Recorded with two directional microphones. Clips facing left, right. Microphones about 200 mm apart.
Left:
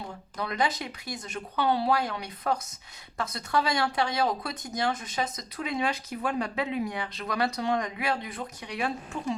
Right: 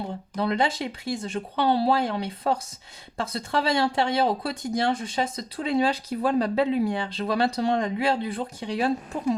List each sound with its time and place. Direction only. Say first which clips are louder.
0.1 s speech: right 8 dB; 30° right (ahead or behind)
9.1 s a woman's voice: right 6 dB; 40° right (ahead or behind)